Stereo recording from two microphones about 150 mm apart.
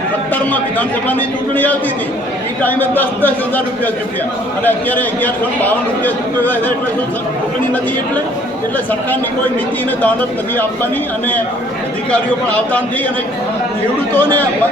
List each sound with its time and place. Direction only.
0.5 s a man's voice: 10° left (ahead or behind)
4.6 s a man's voice: 10° left (ahead or behind)
10.0 s a man's voice: 10° left (ahead or behind)
12.1 s a man's voice: 10° left (ahead or behind)
14.1 s a man's voice: 10° left (ahead or behind)